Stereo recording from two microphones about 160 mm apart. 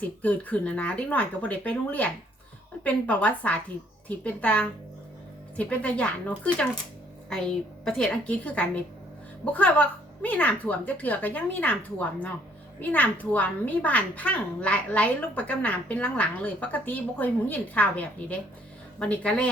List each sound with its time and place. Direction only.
0.2 s a woman's voice: 10° left (ahead or behind)